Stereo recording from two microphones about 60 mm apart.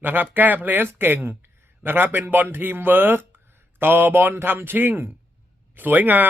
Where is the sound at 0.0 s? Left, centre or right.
Right.